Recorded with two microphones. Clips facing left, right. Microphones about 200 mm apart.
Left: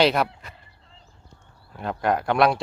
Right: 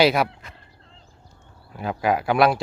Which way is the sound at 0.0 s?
5° right (ahead or behind).